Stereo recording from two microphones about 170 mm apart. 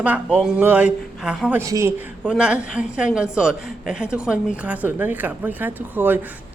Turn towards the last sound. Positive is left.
turn(degrees=-10)  # may be behind; listen again after turning